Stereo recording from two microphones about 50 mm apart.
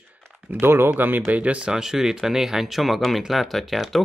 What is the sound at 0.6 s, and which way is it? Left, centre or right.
Speech, right.